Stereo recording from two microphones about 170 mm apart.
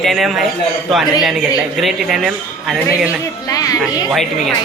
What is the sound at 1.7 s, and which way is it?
Speech, centre (ahead or behind).